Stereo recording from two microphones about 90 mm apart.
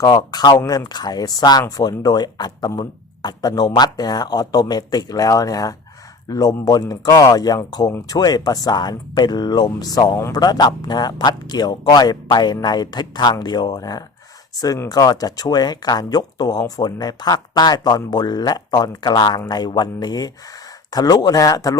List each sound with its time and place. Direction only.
0.0 s speech: 45° left (ahead or behind)